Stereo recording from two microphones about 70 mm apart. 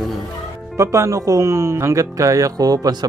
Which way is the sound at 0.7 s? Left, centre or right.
Right.